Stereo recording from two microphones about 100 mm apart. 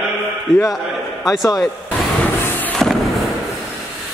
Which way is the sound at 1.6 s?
15° left (ahead or behind).